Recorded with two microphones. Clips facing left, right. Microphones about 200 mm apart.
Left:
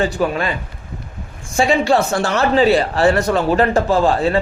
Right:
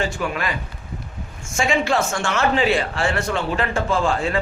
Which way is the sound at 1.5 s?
35° left (ahead or behind).